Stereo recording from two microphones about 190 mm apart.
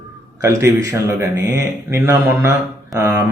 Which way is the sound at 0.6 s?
15° right (ahead or behind).